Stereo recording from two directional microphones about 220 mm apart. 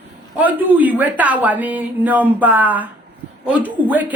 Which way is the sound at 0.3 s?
5° right (ahead or behind).